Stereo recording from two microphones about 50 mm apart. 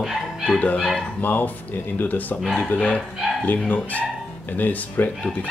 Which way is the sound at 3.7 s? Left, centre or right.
Left.